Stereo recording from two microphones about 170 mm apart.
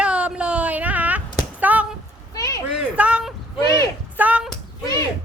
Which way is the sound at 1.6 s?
10° right (ahead or behind).